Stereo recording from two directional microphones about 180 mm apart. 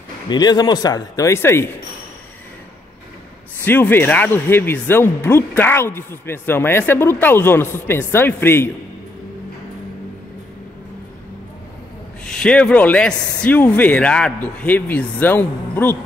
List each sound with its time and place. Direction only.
0.3 s speech: 25° left (ahead or behind)
3.6 s speech: 10° left (ahead or behind)
12.3 s speech: 5° left (ahead or behind)